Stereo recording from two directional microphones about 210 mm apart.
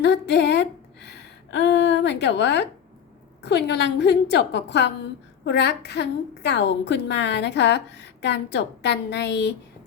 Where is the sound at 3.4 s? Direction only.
50° left (ahead or behind).